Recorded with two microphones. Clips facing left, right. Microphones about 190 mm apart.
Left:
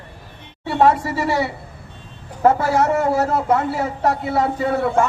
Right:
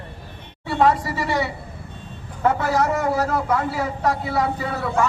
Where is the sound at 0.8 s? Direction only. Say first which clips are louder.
Left 3 dB; 50° left (ahead or behind).